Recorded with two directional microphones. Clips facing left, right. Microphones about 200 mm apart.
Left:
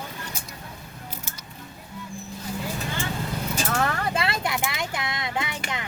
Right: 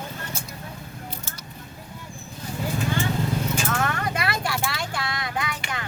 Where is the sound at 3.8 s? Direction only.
30° left (ahead or behind).